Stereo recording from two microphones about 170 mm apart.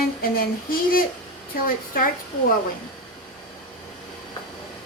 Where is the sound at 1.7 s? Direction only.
55° left (ahead or behind).